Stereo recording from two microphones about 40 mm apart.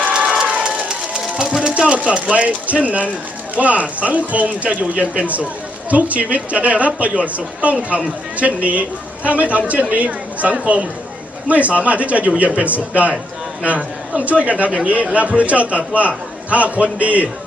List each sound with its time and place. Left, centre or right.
0.4 s run: right
0.7 s a sound: centre
1.7 s speech: right